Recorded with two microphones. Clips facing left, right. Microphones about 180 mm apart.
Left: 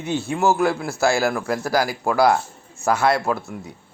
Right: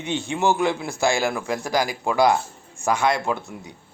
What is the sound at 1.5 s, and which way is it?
Speech, 20° right (ahead or behind).